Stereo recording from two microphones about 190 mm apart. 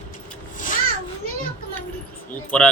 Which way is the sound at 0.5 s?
45° left (ahead or behind).